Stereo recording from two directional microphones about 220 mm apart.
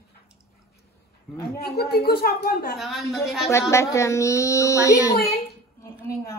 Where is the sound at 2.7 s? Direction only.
Centre (ahead or behind).